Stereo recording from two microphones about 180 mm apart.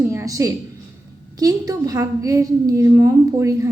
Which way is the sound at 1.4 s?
20° right (ahead or behind).